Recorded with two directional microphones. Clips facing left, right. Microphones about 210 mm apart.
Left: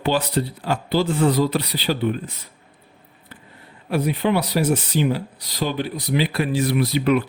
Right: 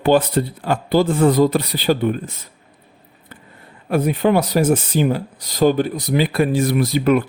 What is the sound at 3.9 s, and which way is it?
Speech, 50° right (ahead or behind).